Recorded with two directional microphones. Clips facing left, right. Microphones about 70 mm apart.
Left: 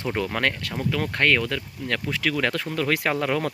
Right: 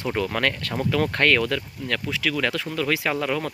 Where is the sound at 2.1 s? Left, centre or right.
Left.